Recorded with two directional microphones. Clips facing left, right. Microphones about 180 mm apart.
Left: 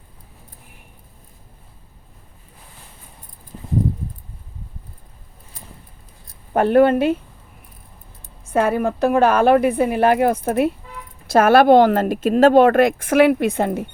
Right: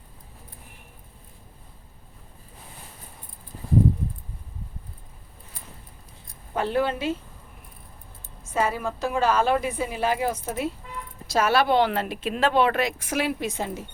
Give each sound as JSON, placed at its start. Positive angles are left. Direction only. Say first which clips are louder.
{"t": 6.5, "sound": "a woman's voice", "louder": "left 11 dB", "side_deg": 55}
{"t": 8.4, "sound": "a woman's voice", "louder": "left 8 dB", "side_deg": 60}